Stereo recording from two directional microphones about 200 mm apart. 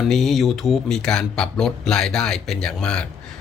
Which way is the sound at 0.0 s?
Centre (ahead or behind).